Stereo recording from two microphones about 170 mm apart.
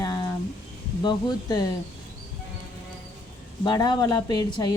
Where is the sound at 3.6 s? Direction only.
25° left (ahead or behind).